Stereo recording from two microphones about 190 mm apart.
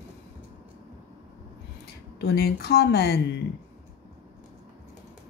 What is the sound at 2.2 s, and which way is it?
Speech, 55° left (ahead or behind).